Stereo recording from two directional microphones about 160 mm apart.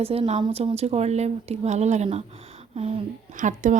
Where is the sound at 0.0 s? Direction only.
40° right (ahead or behind).